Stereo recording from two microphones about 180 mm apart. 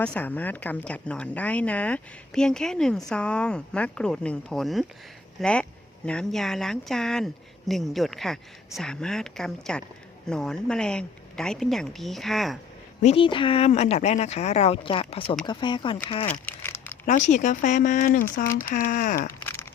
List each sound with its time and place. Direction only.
0.0 s speech: 10° left (ahead or behind)
13.0 s speech: 35° left (ahead or behind)
16.3 s crumpling: 10° left (ahead or behind)
17.1 s speech: 40° left (ahead or behind)